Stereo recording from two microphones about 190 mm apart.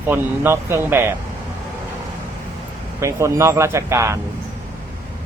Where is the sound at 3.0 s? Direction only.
15° right (ahead or behind).